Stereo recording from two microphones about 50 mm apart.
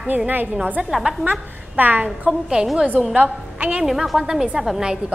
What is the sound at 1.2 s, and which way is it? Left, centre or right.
Speech, right.